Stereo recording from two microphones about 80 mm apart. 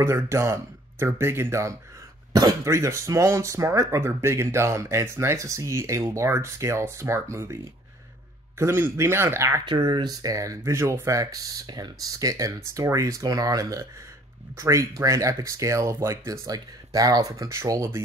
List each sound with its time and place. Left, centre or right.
0.0 s speech: right
8.5 s speech: right
9.7 s speech: right